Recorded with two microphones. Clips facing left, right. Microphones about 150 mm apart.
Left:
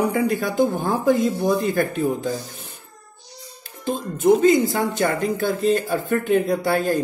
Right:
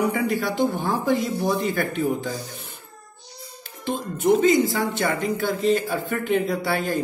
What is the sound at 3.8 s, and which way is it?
Speech, 40° left (ahead or behind).